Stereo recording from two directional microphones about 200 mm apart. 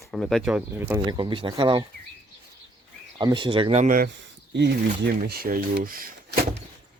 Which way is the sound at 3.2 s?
20° right (ahead or behind).